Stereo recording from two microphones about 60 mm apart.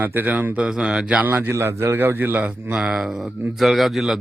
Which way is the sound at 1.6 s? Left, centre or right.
Right.